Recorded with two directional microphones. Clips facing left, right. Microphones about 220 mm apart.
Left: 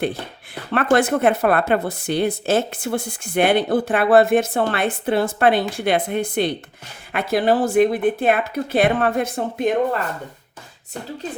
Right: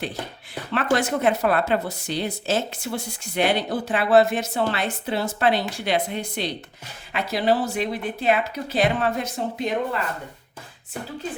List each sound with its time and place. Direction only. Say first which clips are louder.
0.7 s a woman's voice: left 5 dB; 55° left (ahead or behind)